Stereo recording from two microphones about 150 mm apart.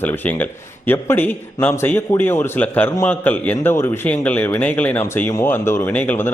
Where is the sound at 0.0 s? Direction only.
10° left (ahead or behind).